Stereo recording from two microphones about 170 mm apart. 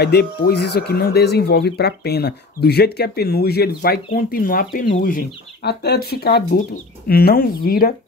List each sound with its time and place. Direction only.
0.0 s speech: 75° left (ahead or behind); by 7.9 s 60° left (ahead or behind)